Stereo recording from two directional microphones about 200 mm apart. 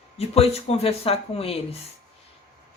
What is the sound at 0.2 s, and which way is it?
Speech, 30° left (ahead or behind).